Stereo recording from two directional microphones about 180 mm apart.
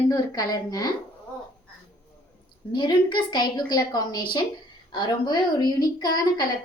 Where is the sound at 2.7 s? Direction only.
25° left (ahead or behind).